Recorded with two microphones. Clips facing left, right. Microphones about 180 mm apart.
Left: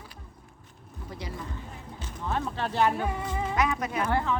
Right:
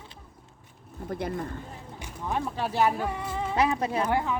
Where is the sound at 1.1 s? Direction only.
55° right (ahead or behind).